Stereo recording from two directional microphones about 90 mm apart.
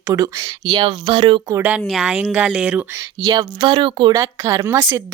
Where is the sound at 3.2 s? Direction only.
45° right (ahead or behind).